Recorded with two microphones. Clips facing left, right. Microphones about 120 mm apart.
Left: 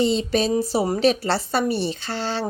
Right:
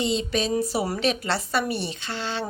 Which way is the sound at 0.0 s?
35° left (ahead or behind).